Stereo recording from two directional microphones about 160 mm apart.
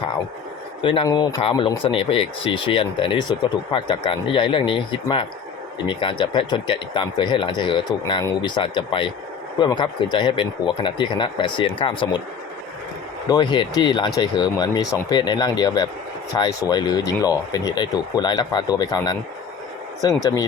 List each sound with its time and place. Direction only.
0.8 s speech: 35° left (ahead or behind)
13.2 s speech: 25° left (ahead or behind)